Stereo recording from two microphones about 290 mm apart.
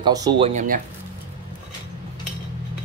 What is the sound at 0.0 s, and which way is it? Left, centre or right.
Speech, centre.